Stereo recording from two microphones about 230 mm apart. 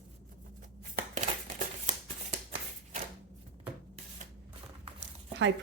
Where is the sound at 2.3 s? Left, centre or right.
Right.